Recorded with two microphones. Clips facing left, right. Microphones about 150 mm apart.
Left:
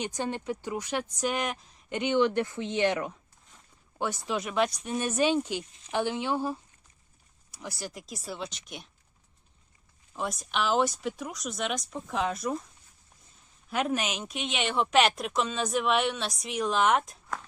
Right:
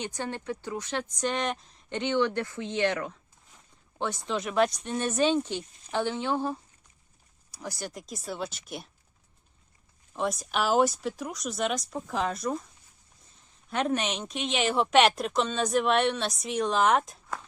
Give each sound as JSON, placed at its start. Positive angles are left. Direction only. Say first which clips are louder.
{"t": 0.0, "sound": "speech", "louder": "left 2 dB", "side_deg": 15}
{"t": 2.0, "sound": "speech", "louder": "left 2 dB", "side_deg": 15}
{"t": 3.9, "sound": "a woman's voice", "louder": "even", "side_deg": 5}
{"t": 10.2, "sound": "a woman's voice", "louder": "right 2 dB", "side_deg": 0}
{"t": 13.7, "sound": "a woman's voice", "louder": "right 1 dB", "side_deg": 0}